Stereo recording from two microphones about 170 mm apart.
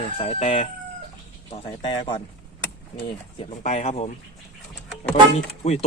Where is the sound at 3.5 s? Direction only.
40° left (ahead or behind).